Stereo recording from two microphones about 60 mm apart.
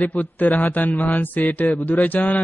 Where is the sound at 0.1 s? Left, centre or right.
Left.